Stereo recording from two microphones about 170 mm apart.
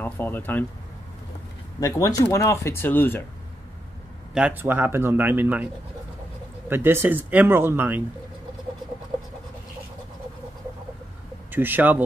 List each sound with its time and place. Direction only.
0.0 s speech: 10° left (ahead or behind)
1.8 s speech: 20° left (ahead or behind)
4.3 s a man's voice: 5° right (ahead or behind)
6.7 s a man's voice: 15° right (ahead or behind)
11.5 s a man's voice: 10° right (ahead or behind)